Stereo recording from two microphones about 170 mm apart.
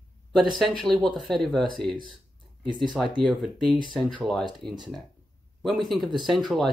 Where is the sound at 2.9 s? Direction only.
Centre (ahead or behind).